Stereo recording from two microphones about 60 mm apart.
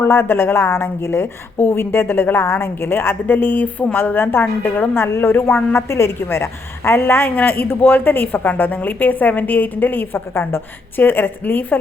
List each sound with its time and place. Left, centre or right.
0.0 s a woman's voice: left